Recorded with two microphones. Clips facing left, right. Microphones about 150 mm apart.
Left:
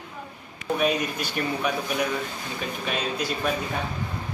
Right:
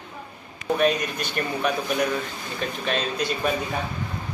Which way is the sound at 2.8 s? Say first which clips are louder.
Right 2 dB; 5° left (ahead or behind).